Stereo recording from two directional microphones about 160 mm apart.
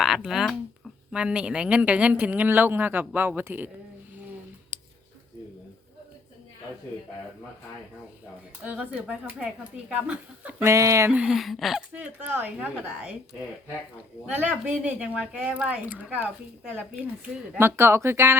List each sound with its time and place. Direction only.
0.0 s speech: centre (ahead or behind)
4.7 s a sound: 10° right (ahead or behind)
8.6 s speech: 10° right (ahead or behind)
11.2 s speech: centre (ahead or behind)
11.9 s speech: 10° right (ahead or behind)
14.3 s speech: 10° right (ahead or behind)
17.6 s speech: 15° right (ahead or behind)